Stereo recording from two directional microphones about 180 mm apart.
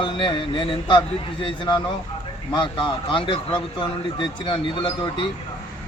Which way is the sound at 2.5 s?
25° left (ahead or behind).